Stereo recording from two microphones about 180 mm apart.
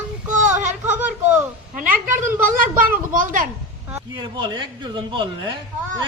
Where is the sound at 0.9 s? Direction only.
10° right (ahead or behind).